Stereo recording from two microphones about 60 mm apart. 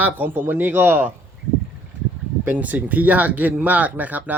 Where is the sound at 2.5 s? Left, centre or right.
Right.